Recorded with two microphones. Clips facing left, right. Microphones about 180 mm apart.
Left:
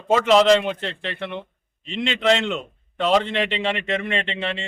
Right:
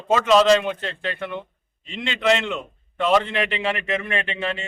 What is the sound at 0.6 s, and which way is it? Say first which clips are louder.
A man's voice: even; 25° left (ahead or behind).